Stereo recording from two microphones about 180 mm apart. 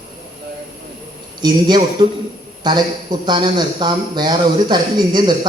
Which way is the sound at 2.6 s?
25° right (ahead or behind).